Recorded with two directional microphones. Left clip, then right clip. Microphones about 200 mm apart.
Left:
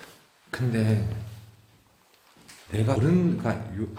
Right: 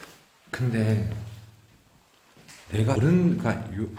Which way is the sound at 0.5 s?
5° left (ahead or behind).